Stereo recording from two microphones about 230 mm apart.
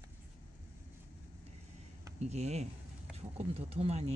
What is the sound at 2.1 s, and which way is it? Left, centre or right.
Speech, right.